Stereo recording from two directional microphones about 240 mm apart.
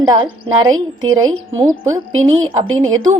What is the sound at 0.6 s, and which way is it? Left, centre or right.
A woman's voice, centre.